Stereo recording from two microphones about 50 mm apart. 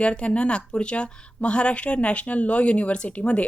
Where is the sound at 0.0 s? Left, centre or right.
Left.